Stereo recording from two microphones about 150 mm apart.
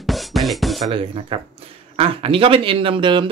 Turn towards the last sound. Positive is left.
turn(degrees=-30)  # may be behind; listen again after turning